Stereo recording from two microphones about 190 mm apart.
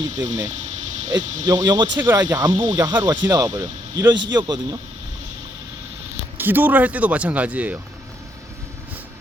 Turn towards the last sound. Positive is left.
turn(degrees=-5)  # may be behind; listen again after turning